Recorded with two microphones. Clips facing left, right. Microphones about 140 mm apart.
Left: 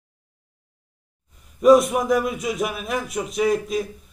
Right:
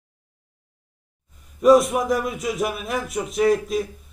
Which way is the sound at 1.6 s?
Centre (ahead or behind).